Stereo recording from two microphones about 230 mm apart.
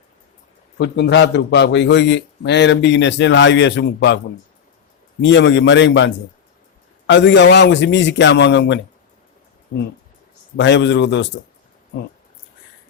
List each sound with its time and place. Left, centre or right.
0.8 s a man's voice: left
5.2 s a man's voice: left
7.1 s a man's voice: left
10.6 s a man's voice: left